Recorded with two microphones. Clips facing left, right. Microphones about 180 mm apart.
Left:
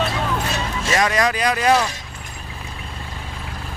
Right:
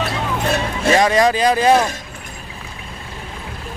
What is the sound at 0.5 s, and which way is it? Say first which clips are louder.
Music: right 6 dB; 60° right (ahead or behind).